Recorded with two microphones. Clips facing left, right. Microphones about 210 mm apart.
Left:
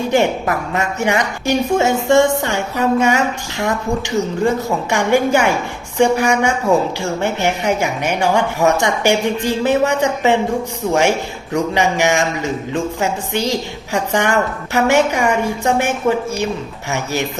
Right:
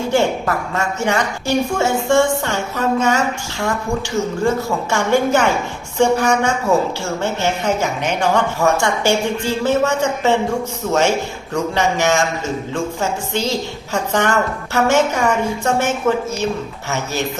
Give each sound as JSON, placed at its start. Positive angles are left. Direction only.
{"t": 0.1, "sound": "a woman's voice", "side_deg": 15}
{"t": 11.5, "sound": "a woman's voice", "side_deg": 15}